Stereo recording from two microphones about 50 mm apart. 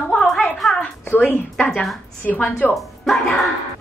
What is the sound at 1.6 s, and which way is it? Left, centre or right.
Speech, centre.